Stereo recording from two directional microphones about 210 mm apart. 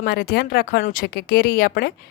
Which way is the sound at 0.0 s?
45° left (ahead or behind).